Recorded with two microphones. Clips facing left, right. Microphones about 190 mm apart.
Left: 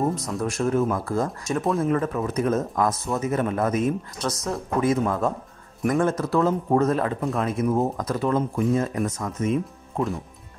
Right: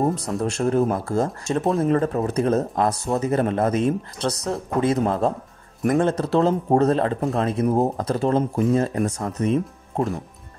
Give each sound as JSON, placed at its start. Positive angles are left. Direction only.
{"t": 0.4, "sound": "speech", "side_deg": -30}